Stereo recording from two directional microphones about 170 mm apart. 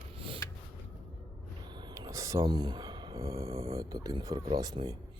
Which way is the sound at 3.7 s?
20° right (ahead or behind).